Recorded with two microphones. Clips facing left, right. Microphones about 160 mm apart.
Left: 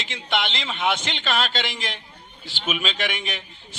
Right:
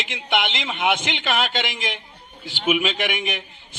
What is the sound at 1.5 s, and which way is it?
Speech, 50° right (ahead or behind).